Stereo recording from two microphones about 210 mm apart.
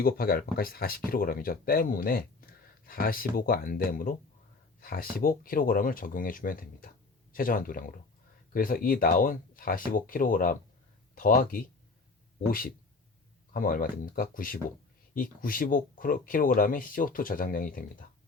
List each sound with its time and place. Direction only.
0.0 s speech: 45° left (ahead or behind)